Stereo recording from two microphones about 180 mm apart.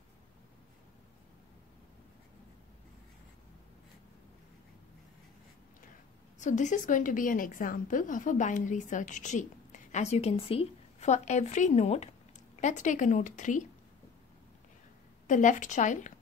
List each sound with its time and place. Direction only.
6.4 s a woman's voice: 40° left (ahead or behind)
15.2 s a woman's voice: 45° left (ahead or behind)